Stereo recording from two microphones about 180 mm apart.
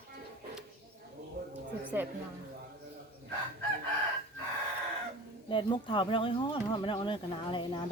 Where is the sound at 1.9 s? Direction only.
10° right (ahead or behind).